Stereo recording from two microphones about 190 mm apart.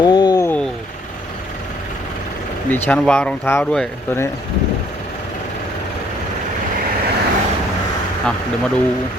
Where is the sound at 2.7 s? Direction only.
5° left (ahead or behind).